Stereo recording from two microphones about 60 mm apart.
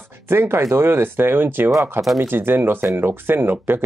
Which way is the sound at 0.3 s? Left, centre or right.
Right.